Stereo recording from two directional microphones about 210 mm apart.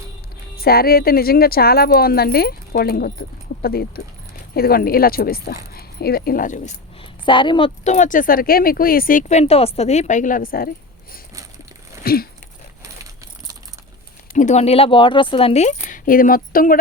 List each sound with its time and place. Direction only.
0.5 s speech: 45° left (ahead or behind)
7.0 s a woman's voice: 25° left (ahead or behind)
7.9 s speech: 35° left (ahead or behind)
12.0 s a sound: 45° left (ahead or behind)
14.3 s speech: 35° left (ahead or behind)